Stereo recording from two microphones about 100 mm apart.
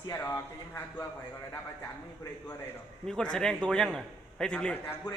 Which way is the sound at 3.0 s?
5° left (ahead or behind).